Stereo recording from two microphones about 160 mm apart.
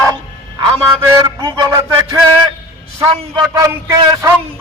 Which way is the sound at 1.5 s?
25° right (ahead or behind).